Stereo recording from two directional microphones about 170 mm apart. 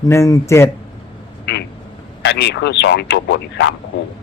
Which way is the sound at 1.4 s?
75° left (ahead or behind).